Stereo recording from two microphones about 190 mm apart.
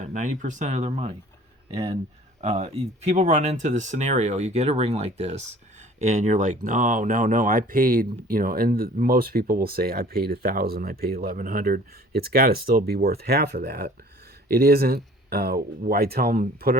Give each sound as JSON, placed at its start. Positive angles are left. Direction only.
{"t": 0.0, "sound": "speech", "side_deg": -40}